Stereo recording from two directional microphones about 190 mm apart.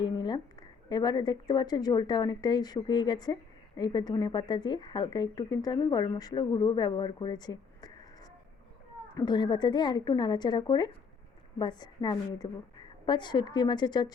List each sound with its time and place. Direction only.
0.0 s a sound: 20° left (ahead or behind)
0.9 s speech: 20° left (ahead or behind)
9.1 s speech: 20° left (ahead or behind)